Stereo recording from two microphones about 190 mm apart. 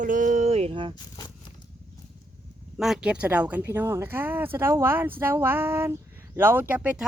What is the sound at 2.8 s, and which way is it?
Speech, 5° right (ahead or behind).